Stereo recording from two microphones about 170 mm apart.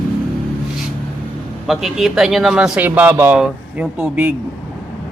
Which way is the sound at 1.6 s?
Centre (ahead or behind).